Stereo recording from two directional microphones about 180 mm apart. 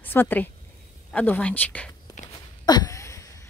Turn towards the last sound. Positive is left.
turn(degrees=15)  # may be behind; listen again after turning